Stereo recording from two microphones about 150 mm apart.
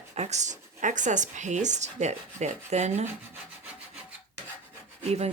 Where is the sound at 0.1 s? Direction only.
50° right (ahead or behind).